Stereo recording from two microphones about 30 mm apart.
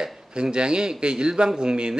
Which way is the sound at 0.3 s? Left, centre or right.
Right.